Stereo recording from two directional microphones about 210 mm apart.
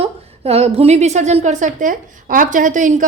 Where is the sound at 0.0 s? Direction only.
30° right (ahead or behind).